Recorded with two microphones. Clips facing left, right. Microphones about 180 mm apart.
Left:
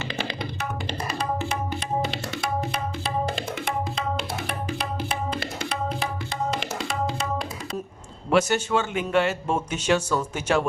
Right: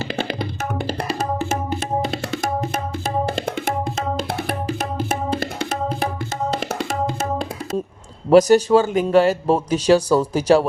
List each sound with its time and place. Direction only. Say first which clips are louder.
0.3 s music: right 5 dB; 45° right (ahead or behind)
1.2 s tabla: right 2 dB; 45° right (ahead or behind)
4.4 s music: right 5 dB; 40° right (ahead or behind)
8.3 s speech: right 10 dB; 35° right (ahead or behind)